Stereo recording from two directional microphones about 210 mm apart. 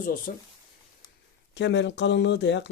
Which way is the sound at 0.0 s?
40° left (ahead or behind).